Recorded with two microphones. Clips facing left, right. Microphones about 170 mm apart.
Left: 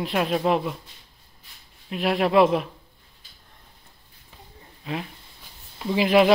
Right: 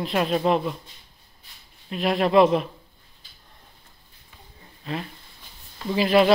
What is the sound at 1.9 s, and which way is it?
Speech, 10° left (ahead or behind).